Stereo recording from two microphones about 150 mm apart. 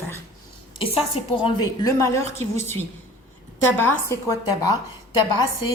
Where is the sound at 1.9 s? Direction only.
20° left (ahead or behind).